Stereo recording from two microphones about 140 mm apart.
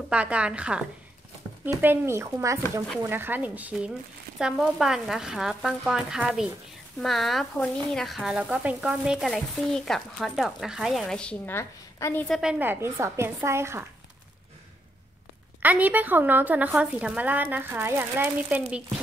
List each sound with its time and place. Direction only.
0.1 s a woman's voice: 10° right (ahead or behind); by 12.3 s 15° left (ahead or behind)
12.3 s a woman's voice: 5° right (ahead or behind)
15.6 s a woman's voice: 10° right (ahead or behind)